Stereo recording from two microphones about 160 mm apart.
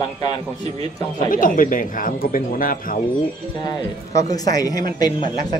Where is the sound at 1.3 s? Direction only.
60° left (ahead or behind).